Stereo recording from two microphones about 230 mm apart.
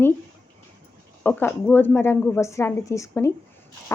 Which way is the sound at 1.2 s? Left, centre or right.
Centre.